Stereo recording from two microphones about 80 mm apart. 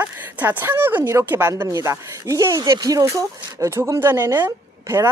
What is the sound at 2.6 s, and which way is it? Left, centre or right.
Speech, right.